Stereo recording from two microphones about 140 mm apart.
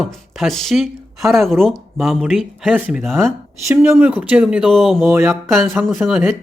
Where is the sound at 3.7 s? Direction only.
15° right (ahead or behind); by 5.0 s centre (ahead or behind).